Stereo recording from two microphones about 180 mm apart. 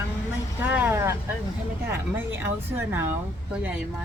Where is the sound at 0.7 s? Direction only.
10° right (ahead or behind).